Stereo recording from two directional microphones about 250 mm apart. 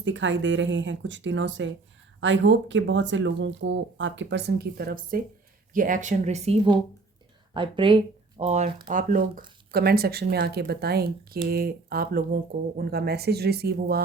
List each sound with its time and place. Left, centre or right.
0.0 s speech: right